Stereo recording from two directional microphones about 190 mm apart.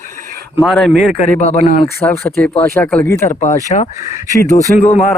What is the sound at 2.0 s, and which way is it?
Speech, 10° left (ahead or behind).